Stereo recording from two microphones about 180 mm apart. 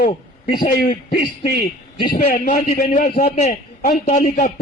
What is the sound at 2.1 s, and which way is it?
Speech, 60° left (ahead or behind).